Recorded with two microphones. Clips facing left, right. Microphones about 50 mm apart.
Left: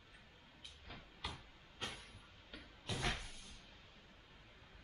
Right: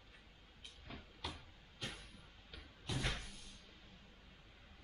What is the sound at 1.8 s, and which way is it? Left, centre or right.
Train, left.